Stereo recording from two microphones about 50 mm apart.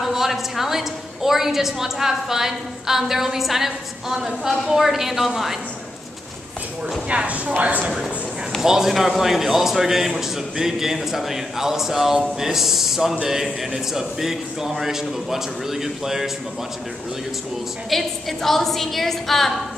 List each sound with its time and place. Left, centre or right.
0.0 s a woman's voice: centre
7.1 s a woman's voice: right
8.0 s a sound: centre
8.6 s a woman's voice: centre
17.8 s a woman's voice: centre